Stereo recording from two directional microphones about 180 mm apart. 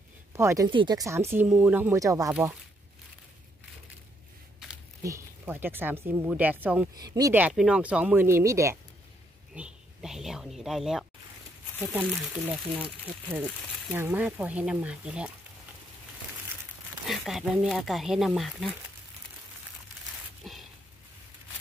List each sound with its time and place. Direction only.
0.3 s speech: 15° right (ahead or behind)
0.7 s speech: 25° right (ahead or behind)
5.0 s speech: 15° right (ahead or behind)
9.5 s speech: 5° right (ahead or behind)
13.9 s speech: 10° right (ahead or behind)
17.1 s speech: centre (ahead or behind)
20.4 s a sound: centre (ahead or behind)